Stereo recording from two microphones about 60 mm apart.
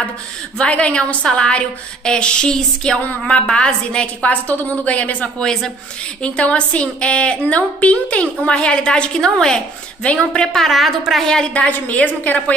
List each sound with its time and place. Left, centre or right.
0.6 s a woman's voice: left
5.4 s a woman's voice: centre
6.2 s a woman's voice: centre
11.5 s a woman's voice: left